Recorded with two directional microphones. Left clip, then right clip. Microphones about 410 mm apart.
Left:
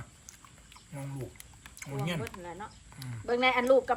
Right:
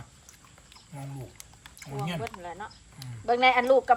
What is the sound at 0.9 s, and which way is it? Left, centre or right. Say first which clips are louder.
Speech: even; centre.